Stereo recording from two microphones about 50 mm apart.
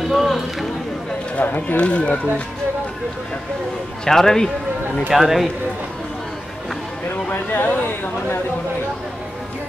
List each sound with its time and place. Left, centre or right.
0.1 s a sound: centre
1.3 s speech: left
1.8 s speech: left
4.0 s a man's voice: centre
5.1 s speech: centre
7.1 s speech: left